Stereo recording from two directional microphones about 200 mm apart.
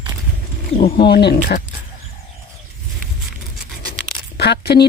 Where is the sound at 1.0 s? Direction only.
55° left (ahead or behind).